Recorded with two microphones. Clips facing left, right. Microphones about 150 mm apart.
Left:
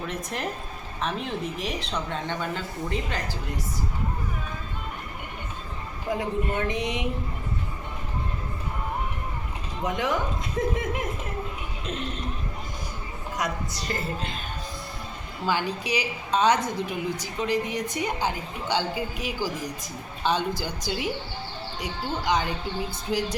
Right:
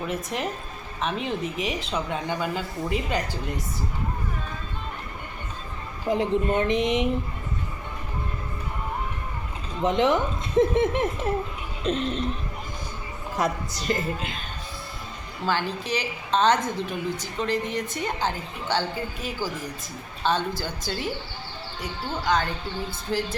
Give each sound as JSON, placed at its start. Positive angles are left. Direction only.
{"t": 0.1, "sound": "speech", "side_deg": 0}
{"t": 6.1, "sound": "speech", "side_deg": -20}
{"t": 9.8, "sound": "speech", "side_deg": -25}
{"t": 11.8, "sound": "a sound", "side_deg": -30}
{"t": 14.2, "sound": "speech", "side_deg": 0}
{"t": 15.4, "sound": "a woman's voice", "side_deg": 10}